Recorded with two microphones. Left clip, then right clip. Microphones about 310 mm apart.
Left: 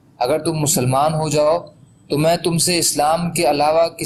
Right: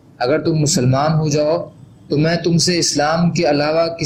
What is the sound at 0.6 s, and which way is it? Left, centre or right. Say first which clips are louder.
Speech: even; centre.